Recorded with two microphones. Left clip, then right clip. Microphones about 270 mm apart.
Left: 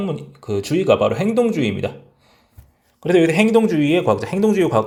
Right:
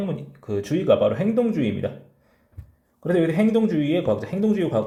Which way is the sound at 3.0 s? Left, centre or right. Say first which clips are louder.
Left 6 dB; centre.